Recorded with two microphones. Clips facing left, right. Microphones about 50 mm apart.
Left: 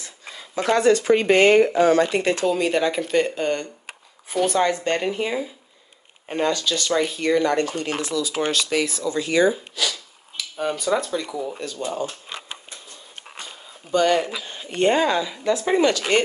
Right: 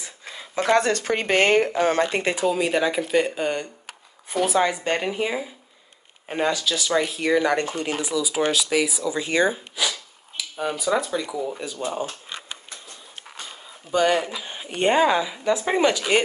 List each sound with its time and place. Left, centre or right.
0.6 s speech: right
1.8 s speech: right
2.3 s speech: centre
7.5 s speech: right
8.0 s speech: centre
9.3 s speech: right
10.3 s speech: centre
13.5 s a sound: centre
14.0 s speech: centre